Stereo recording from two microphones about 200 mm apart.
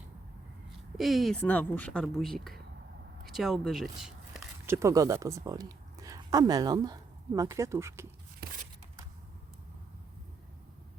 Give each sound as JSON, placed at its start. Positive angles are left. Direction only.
{"t": 0.9, "sound": "speech", "side_deg": 0}
{"t": 4.6, "sound": "speech", "side_deg": -15}
{"t": 8.4, "sound": "a sound", "side_deg": -50}